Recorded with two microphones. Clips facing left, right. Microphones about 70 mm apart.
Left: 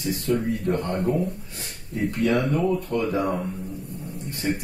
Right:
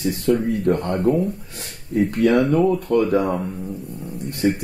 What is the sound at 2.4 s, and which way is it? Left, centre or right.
Speech, right.